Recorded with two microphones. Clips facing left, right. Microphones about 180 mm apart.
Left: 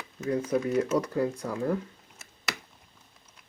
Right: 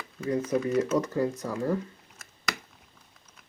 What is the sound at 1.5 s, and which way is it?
Speech, 5° right (ahead or behind).